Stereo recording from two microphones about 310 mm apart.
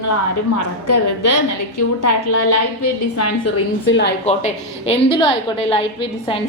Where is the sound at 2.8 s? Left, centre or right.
Left.